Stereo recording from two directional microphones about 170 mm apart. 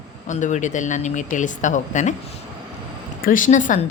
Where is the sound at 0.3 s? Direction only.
45° left (ahead or behind).